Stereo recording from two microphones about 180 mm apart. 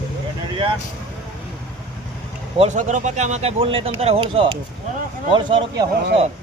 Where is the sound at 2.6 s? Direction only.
45° right (ahead or behind).